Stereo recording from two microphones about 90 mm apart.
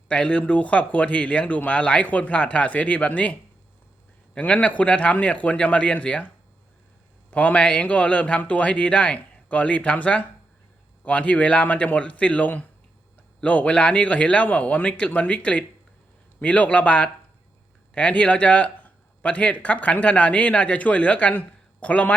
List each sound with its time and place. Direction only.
0.1 s speech: 15° left (ahead or behind)
4.4 s speech: 15° left (ahead or behind)